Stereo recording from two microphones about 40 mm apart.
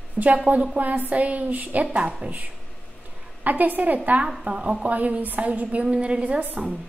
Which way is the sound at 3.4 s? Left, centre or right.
Right.